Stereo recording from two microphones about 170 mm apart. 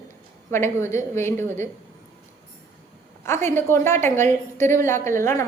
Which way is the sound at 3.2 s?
15° left (ahead or behind).